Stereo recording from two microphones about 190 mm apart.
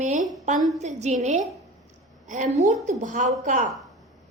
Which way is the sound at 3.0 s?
40° right (ahead or behind).